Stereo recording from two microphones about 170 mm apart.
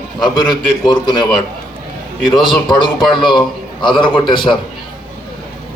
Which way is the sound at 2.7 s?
25° left (ahead or behind).